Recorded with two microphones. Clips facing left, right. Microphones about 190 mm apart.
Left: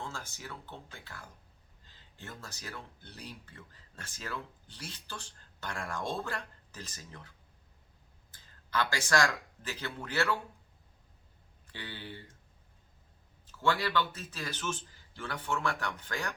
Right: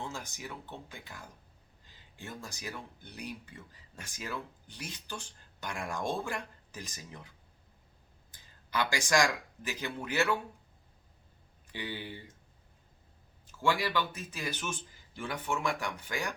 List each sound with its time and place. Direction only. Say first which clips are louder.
0.0 s speech: right 2 dB; 15° right (ahead or behind)
11.7 s speech: right 4 dB; 15° right (ahead or behind)
13.5 s speech: even; 10° right (ahead or behind)